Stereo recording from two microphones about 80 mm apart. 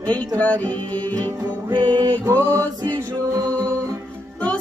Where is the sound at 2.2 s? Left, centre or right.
Right.